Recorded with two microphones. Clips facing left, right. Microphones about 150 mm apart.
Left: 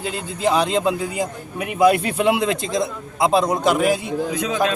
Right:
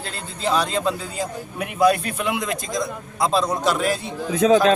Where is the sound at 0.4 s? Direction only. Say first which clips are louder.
Left 3 dB; 20° left (ahead or behind).